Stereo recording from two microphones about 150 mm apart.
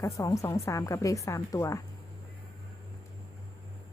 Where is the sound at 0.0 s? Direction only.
20° left (ahead or behind).